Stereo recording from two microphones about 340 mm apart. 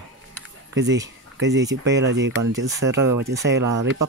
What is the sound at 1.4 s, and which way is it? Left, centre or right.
Speech, right.